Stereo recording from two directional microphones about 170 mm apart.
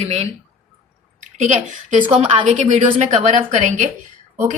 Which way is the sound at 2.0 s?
30° right (ahead or behind).